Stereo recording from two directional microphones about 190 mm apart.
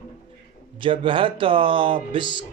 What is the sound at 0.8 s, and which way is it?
Speech, 25° right (ahead or behind).